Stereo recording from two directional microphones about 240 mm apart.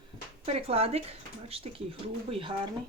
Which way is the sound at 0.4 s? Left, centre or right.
Right.